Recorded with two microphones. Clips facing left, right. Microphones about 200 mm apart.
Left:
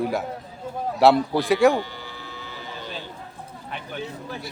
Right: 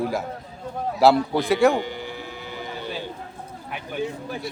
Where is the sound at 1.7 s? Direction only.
15° right (ahead or behind).